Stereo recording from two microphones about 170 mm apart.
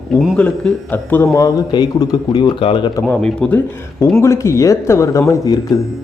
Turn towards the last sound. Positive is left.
turn(degrees=20)  # may be behind; listen again after turning